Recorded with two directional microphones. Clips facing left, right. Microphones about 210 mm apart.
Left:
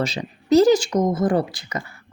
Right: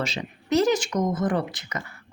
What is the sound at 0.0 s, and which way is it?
Speech, 35° left (ahead or behind).